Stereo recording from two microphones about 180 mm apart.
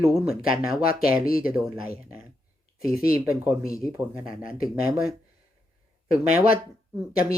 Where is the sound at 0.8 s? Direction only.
55° left (ahead or behind).